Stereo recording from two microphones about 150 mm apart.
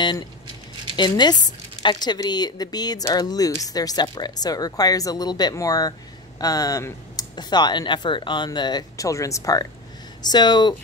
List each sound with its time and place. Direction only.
0.9 s speech: 30° left (ahead or behind)